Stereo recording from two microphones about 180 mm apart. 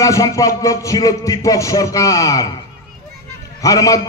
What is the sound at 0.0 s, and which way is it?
Music, 20° left (ahead or behind).